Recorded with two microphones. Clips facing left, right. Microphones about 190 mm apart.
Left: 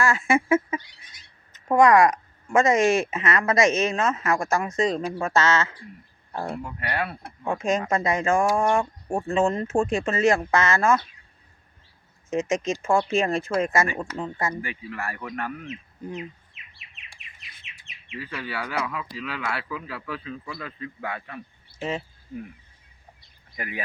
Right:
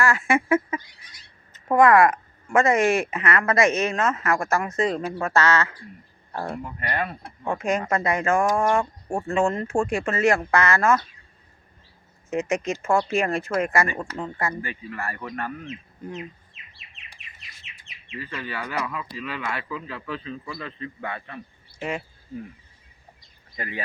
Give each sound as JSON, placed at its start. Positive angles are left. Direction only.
{"t": 0.0, "sound": "speech", "side_deg": 15}
{"t": 6.3, "sound": "speech", "side_deg": 10}
{"t": 6.6, "sound": "speech", "side_deg": -5}
{"t": 6.8, "sound": "speech", "side_deg": 10}
{"t": 12.8, "sound": "speech", "side_deg": 15}
{"t": 14.0, "sound": "speech", "side_deg": 0}
{"t": 14.3, "sound": "speech", "side_deg": 15}
{"t": 17.8, "sound": "speech", "side_deg": 15}
{"t": 23.6, "sound": "speech", "side_deg": 10}